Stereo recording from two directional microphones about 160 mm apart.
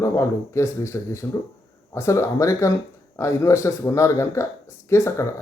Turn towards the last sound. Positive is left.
turn(degrees=15)  # may be behind; listen again after turning